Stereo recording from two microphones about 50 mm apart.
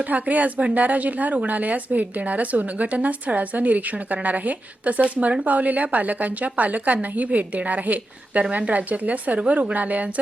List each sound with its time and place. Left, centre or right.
0.0 s speech: right